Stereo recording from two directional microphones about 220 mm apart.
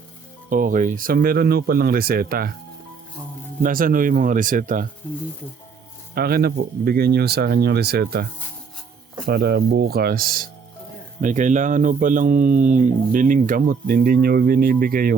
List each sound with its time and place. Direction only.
0.5 s speech: 35° right (ahead or behind)
3.6 s speech: 40° right (ahead or behind)
6.1 s speech: 45° right (ahead or behind)